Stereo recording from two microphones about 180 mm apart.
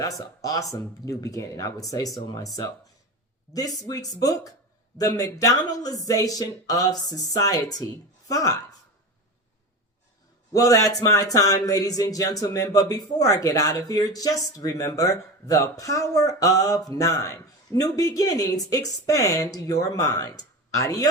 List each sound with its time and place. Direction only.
0.0 s speech: 20° left (ahead or behind)
10.5 s speech: 20° left (ahead or behind)